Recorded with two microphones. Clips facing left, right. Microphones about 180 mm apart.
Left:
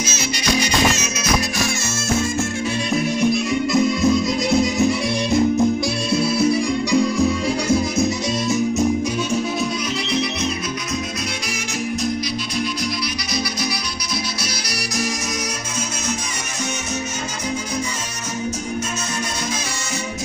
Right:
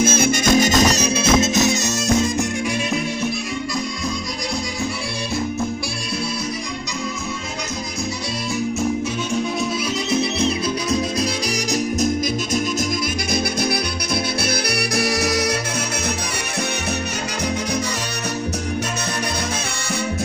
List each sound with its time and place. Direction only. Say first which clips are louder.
0.0 s music: right 7 dB; 50° right (ahead or behind); by 2.4 s 15° right (ahead or behind)
3.7 s music: left 9 dB; 20° left (ahead or behind)